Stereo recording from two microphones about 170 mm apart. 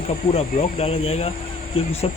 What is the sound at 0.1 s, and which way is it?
Speech, 35° left (ahead or behind).